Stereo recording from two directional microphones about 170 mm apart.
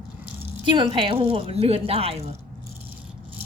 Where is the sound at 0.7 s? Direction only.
30° right (ahead or behind).